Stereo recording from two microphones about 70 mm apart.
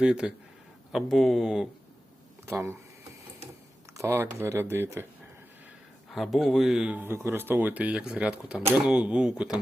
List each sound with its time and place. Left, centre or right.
0.0 s speech: centre
0.9 s speech: centre
2.5 s speech: right
4.0 s speech: right
6.1 s speech: centre
6.9 s speech: right; by 9.6 s centre